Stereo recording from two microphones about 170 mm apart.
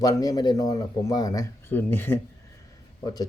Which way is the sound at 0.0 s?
20° left (ahead or behind).